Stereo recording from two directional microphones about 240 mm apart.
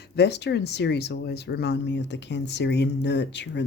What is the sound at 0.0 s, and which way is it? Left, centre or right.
Speech, left.